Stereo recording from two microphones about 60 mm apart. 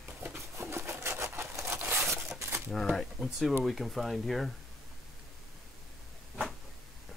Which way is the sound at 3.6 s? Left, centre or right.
Centre.